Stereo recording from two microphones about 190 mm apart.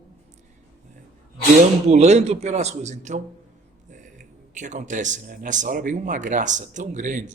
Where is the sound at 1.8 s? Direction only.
35° right (ahead or behind).